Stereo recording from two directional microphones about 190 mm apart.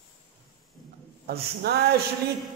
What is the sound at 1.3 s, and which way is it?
Speech, 60° right (ahead or behind).